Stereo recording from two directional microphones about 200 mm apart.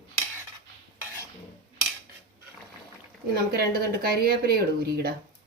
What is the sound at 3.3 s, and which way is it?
Speech, 50° right (ahead or behind).